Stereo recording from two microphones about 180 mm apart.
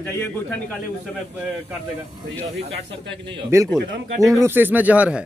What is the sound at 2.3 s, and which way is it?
Speech, 80° right.